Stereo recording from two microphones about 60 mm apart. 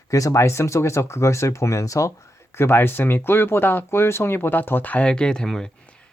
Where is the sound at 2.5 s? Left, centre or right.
Left.